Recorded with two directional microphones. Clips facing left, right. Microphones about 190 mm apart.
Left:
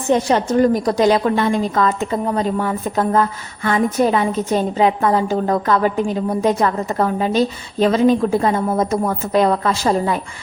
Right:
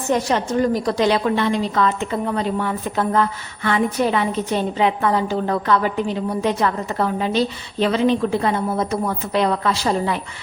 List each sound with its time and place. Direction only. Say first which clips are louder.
0.1 s a woman's voice: left 4 dB; 30° left (ahead or behind)
0.5 s a woman's voice: left 4 dB; 45° left (ahead or behind)